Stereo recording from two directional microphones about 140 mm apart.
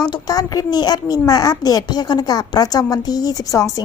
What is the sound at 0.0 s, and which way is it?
A child's voice, 30° left (ahead or behind).